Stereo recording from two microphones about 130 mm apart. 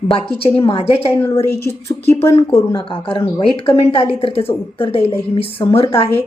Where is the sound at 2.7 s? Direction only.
40° left (ahead or behind).